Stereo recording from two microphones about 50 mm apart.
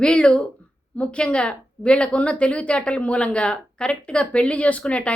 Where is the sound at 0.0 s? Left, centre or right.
Centre.